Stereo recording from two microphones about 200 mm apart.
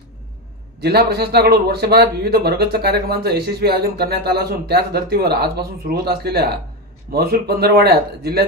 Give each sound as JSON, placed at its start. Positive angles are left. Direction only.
{"t": 0.8, "sound": "a man's voice", "side_deg": -55}